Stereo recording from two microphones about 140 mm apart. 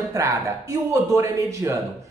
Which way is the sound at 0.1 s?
20° right (ahead or behind).